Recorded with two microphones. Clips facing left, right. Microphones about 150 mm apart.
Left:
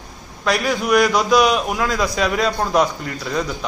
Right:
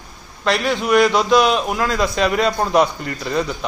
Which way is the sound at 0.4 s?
5° left (ahead or behind).